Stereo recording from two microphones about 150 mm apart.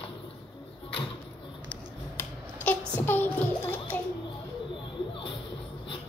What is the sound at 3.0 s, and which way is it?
Child singing, 15° left (ahead or behind).